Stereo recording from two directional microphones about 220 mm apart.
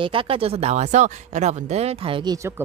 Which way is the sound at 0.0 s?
25° right (ahead or behind).